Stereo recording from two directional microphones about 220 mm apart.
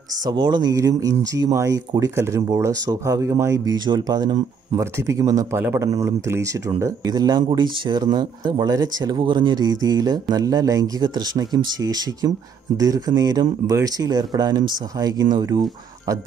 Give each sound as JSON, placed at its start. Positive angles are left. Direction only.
{"t": 0.3, "sound": "speech", "side_deg": -20}